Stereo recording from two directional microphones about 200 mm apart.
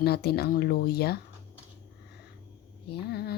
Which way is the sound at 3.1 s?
55° left (ahead or behind).